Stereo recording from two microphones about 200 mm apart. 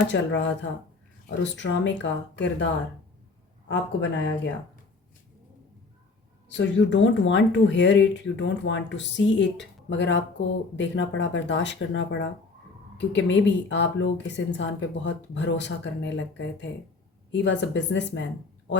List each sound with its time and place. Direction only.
0.1 s speech: 65° left (ahead or behind)
3.7 s speech: 60° left (ahead or behind)
6.5 s speech: 65° left (ahead or behind)